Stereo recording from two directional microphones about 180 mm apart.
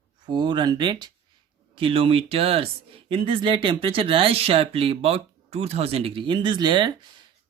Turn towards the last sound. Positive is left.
turn(degrees=-25)  # may be behind; listen again after turning